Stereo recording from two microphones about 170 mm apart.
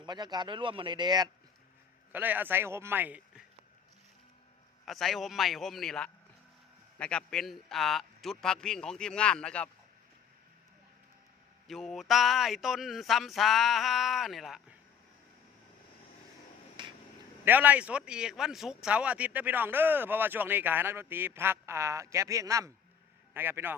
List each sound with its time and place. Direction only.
0.0 s speech: 25° right (ahead or behind)
2.1 s speech: 10° right (ahead or behind)
4.9 s speech: centre (ahead or behind)
11.7 s speech: centre (ahead or behind)
16.8 s a sound: 30° right (ahead or behind)
17.4 s speech: 10° right (ahead or behind)